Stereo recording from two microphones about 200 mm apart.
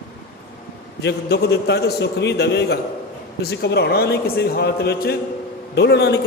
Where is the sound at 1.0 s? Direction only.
55° left (ahead or behind).